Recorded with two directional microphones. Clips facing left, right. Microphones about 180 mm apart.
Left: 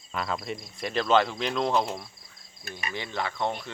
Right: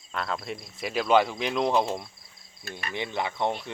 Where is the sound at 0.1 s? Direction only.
Centre (ahead or behind); by 1.9 s 15° right (ahead or behind).